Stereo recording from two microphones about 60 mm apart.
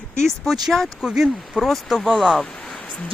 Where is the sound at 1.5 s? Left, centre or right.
Centre.